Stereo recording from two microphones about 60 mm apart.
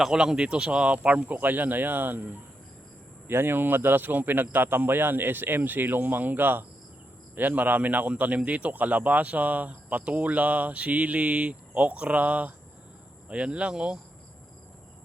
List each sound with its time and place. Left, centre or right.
0.0 s speech: centre; by 2.4 s right
3.2 s speech: right; by 14.0 s centre